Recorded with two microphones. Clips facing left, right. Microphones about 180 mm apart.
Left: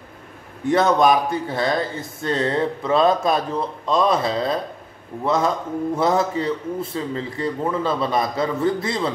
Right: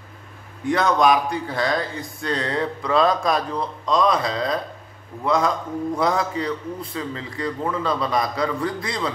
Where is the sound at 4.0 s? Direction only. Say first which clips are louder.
Left 2 dB; 30° left (ahead or behind).